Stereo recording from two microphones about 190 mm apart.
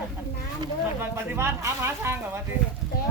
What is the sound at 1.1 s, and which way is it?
Speech, 15° right (ahead or behind).